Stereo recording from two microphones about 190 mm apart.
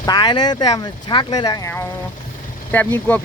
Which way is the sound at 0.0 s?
25° left (ahead or behind).